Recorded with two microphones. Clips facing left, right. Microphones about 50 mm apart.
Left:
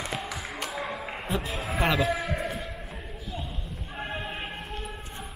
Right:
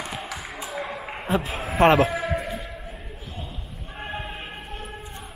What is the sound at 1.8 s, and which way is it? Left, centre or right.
Speech, right.